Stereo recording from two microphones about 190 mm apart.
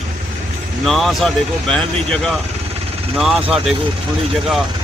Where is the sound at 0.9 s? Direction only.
Centre (ahead or behind).